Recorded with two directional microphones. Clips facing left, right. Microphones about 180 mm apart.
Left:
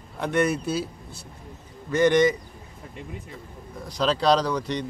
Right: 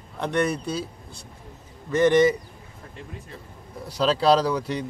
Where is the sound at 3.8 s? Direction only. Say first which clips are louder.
Right 2 dB; 5° right (ahead or behind).